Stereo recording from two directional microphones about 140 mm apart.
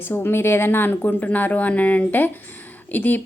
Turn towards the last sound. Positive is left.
turn(degrees=15)  # may be behind; listen again after turning